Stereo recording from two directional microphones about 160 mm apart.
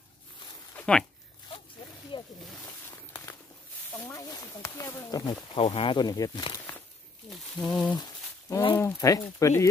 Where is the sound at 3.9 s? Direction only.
15° left (ahead or behind).